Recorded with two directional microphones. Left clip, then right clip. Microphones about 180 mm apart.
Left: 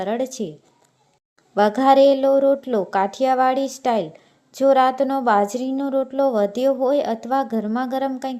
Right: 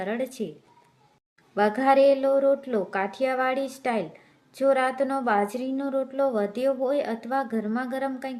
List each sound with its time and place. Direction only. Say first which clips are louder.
0.0 s speech: left 6 dB; 30° left (ahead or behind)
1.5 s speech: left 6 dB; 35° left (ahead or behind)